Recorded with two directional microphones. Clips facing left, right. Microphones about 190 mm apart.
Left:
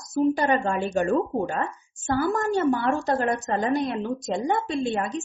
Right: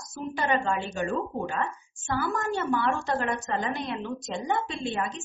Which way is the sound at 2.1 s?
40° left (ahead or behind).